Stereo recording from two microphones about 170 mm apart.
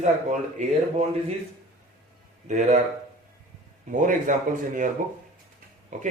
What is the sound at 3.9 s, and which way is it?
A man's voice, 50° right (ahead or behind).